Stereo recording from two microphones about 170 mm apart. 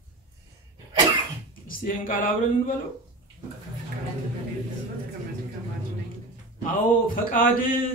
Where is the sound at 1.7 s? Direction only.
55° left (ahead or behind).